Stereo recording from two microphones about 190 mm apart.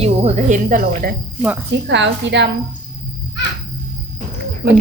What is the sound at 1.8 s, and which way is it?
Speech, 65° right (ahead or behind).